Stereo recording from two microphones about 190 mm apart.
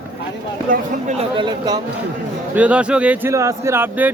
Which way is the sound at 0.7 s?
35° right (ahead or behind).